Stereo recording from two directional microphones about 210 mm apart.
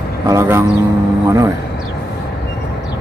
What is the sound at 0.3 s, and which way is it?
Speech, 15° right (ahead or behind).